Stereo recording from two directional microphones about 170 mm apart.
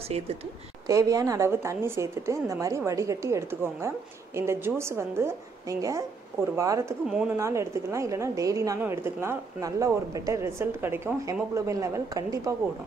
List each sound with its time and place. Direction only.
0.8 s a woman's voice: 20° right (ahead or behind)
7.1 s speech: 5° right (ahead or behind)
7.3 s a woman's voice: 15° right (ahead or behind)